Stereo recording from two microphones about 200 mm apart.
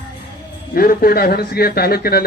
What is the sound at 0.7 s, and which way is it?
Speech, 50° left (ahead or behind).